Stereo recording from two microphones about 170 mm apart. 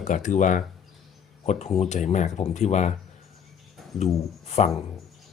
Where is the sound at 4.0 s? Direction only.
40° left (ahead or behind).